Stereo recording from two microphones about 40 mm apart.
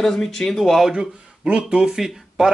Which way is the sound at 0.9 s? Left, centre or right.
Right.